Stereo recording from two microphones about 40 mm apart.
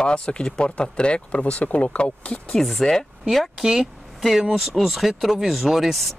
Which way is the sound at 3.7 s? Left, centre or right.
Centre.